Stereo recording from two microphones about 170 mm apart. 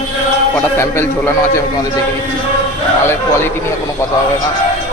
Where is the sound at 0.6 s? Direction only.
15° left (ahead or behind).